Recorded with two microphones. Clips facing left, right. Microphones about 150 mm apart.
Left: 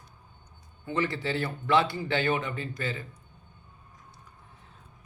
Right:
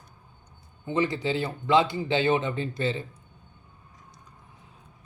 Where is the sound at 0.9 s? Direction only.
20° right (ahead or behind).